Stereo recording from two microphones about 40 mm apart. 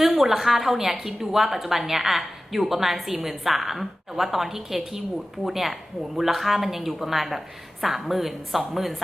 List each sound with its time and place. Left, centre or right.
0.0 s a woman's voice: centre